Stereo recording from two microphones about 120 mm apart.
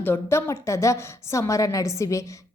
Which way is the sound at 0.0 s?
20° left (ahead or behind).